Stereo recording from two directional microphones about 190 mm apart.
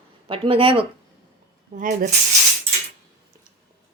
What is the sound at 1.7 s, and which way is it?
Speech, 45° right (ahead or behind).